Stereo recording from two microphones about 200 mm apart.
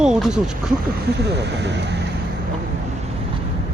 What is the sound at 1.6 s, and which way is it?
Speech, 60° right (ahead or behind).